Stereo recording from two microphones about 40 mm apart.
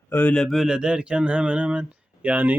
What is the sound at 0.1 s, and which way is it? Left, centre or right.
Speech, left.